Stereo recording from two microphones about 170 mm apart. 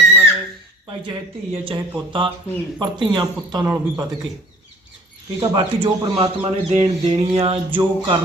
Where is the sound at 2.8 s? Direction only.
25° right (ahead or behind).